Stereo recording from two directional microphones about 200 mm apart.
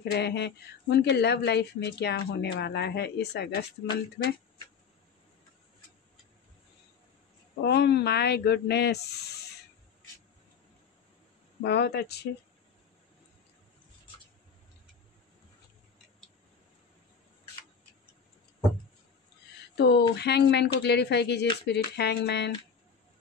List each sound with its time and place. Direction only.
0.1 s speech: 55° left (ahead or behind)
7.6 s speech: 55° left (ahead or behind)
11.6 s speech: 55° left (ahead or behind)
19.7 s speech: 55° left (ahead or behind)